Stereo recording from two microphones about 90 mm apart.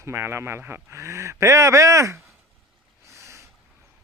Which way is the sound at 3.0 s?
35° right (ahead or behind).